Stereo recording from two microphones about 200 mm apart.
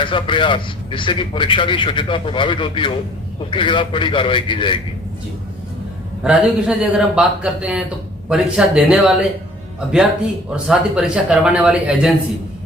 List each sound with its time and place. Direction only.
0.0 s a man's voice: 25° left (ahead or behind)
6.2 s speech: 5° right (ahead or behind)
10.5 s speech: 5° right (ahead or behind)